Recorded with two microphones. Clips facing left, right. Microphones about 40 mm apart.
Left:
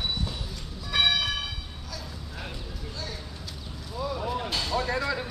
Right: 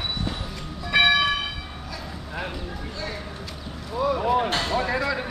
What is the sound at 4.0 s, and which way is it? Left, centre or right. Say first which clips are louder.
Vehicle: right 9 dB; right.